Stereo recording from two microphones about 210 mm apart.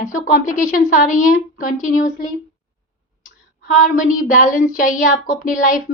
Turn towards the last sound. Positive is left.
turn(degrees=40)  # may be behind; listen again after turning